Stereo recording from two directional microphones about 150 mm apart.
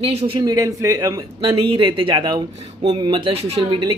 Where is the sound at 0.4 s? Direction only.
25° right (ahead or behind).